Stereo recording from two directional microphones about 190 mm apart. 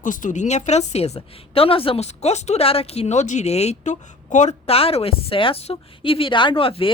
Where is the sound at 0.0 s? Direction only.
45° left (ahead or behind).